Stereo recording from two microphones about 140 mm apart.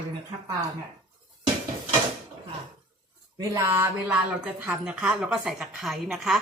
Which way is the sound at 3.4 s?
20° right (ahead or behind).